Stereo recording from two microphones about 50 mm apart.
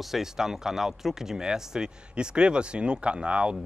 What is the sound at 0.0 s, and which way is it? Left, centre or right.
Speech, centre.